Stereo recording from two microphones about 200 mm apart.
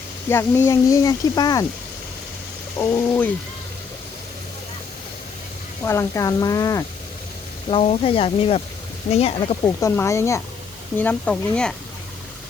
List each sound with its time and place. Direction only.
0.3 s speech: 10° left (ahead or behind)
2.7 s speech: 10° left (ahead or behind)
5.8 s speech: 15° left (ahead or behind)
7.7 s speech: 30° left (ahead or behind)
9.8 s speech: 15° left (ahead or behind)